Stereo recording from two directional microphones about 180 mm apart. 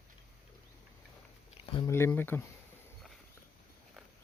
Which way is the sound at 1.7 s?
25° left (ahead or behind).